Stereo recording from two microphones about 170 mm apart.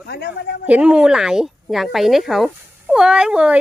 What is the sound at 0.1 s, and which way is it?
Speech, 80° left.